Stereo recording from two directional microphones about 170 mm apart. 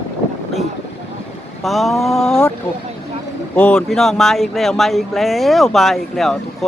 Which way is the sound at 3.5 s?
10° left (ahead or behind).